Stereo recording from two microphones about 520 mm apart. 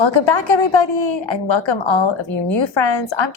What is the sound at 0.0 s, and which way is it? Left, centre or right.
A woman's voice, left.